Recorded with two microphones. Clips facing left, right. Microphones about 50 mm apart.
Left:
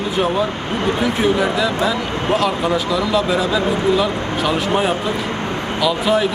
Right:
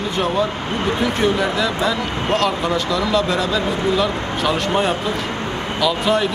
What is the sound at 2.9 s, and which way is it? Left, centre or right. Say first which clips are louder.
Speech: left 1 dB; centre.